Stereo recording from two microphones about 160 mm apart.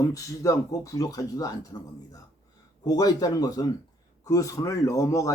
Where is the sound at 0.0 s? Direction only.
20° left (ahead or behind).